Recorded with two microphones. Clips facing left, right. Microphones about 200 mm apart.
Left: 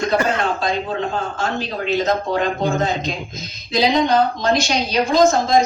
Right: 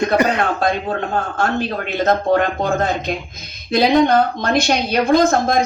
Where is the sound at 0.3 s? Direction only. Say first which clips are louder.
Right 2 dB; 60° right (ahead or behind).